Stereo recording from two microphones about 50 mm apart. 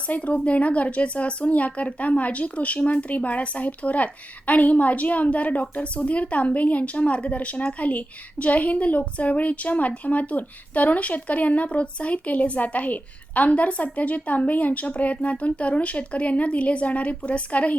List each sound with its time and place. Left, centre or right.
0.1 s speech: left